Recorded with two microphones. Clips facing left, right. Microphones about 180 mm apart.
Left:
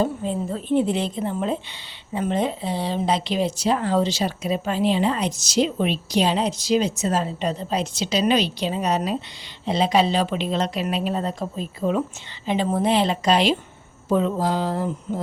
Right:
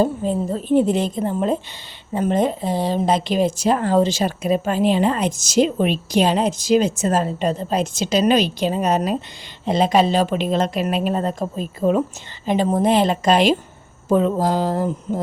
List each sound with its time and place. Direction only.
0.0 s a woman's voice: 40° right (ahead or behind)